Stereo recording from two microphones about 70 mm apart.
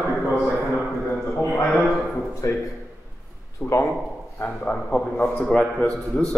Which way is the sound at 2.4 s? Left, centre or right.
Left.